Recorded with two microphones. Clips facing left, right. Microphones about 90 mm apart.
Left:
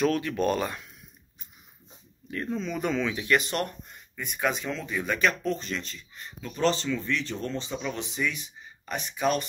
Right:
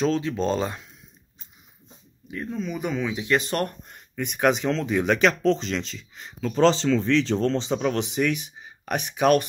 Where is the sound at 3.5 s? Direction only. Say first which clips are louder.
Right 4 dB; 40° right (ahead or behind).